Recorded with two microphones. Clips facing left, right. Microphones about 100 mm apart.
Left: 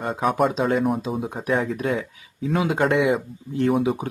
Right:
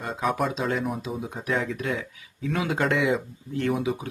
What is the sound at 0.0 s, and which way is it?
Speech, 40° left (ahead or behind).